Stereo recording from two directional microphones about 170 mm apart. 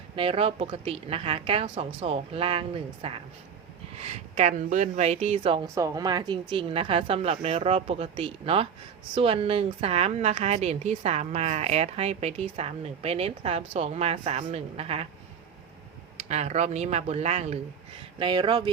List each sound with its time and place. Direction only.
0.2 s a woman's voice: 35° right (ahead or behind)
5.7 s a woman's voice: 20° right (ahead or behind); by 15.0 s 35° right (ahead or behind)
16.3 s a woman's voice: 40° right (ahead or behind)
18.2 s speech: 30° right (ahead or behind)